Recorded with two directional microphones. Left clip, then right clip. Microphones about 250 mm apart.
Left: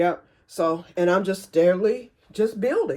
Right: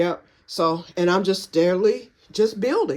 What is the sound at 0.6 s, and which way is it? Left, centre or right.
Speech, centre.